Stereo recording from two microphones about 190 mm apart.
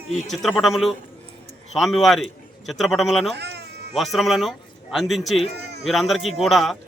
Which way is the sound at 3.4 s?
60° right (ahead or behind).